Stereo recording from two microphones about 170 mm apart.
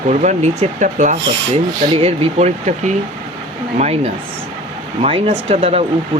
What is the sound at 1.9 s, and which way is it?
Speech, 35° right (ahead or behind).